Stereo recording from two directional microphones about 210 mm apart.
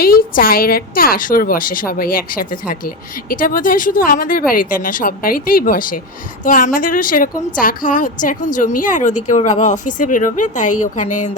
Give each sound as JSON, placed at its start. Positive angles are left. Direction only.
{"t": 0.0, "sound": "a woman's voice", "side_deg": 45}